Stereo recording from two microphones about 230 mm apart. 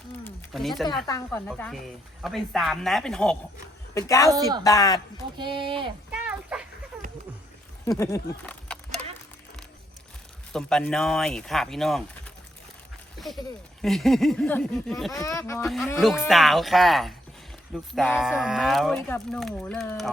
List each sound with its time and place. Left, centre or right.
0.3 s a sound: centre
1.0 s speech: centre
4.3 s speech: centre
4.6 s speech: centre
5.4 s speech: right
6.1 s a sound: centre
7.9 s a sound: centre
10.5 s speech: centre
13.1 s a sound: centre
13.8 s speech: centre
15.1 s speech: centre
15.6 s speech: centre